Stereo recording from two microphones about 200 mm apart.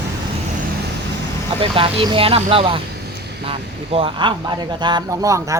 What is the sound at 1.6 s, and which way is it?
A man's voice, 25° right (ahead or behind).